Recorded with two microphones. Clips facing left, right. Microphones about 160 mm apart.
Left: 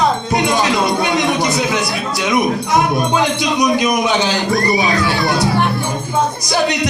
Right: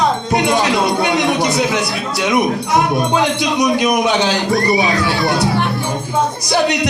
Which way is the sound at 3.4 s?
65° right (ahead or behind).